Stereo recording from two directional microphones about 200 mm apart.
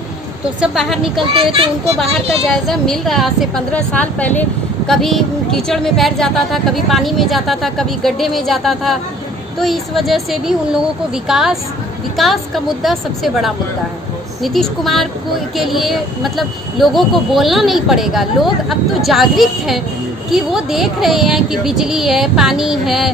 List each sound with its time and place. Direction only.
0.6 s a woman's voice: centre (ahead or behind)
1.3 s a child's voice: 25° right (ahead or behind)
2.7 s a woman's voice: centre (ahead or behind)